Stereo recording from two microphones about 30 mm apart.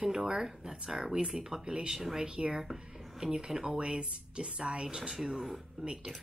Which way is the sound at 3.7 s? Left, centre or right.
Right.